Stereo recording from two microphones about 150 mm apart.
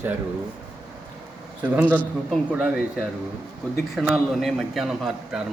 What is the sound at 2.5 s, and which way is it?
A man's voice, 5° right (ahead or behind).